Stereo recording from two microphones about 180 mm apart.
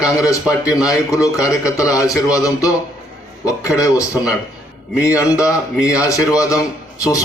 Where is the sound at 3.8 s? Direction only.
15° left (ahead or behind).